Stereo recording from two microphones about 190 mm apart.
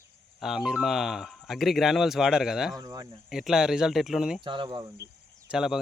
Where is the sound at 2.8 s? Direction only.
20° right (ahead or behind).